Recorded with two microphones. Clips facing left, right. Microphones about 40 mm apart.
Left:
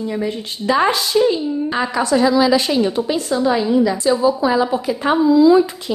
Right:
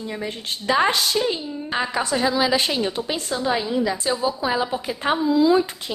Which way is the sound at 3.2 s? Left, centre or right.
Left.